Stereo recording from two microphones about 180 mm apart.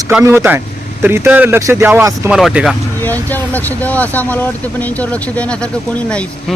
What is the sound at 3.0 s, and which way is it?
Speech, 10° left (ahead or behind).